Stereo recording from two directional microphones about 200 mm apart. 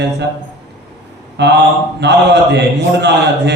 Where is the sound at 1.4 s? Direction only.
60° right (ahead or behind).